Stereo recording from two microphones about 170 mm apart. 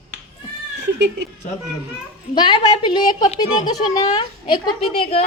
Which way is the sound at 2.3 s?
25° left (ahead or behind).